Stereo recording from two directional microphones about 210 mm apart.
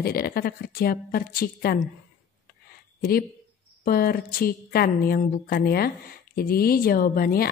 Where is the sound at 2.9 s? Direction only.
45° left (ahead or behind).